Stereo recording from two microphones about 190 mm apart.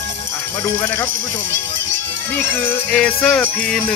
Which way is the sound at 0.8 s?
10° left (ahead or behind).